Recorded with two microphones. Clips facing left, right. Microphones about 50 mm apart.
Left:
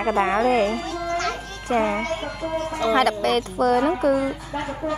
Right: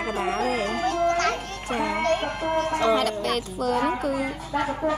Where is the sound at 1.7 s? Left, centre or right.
Left.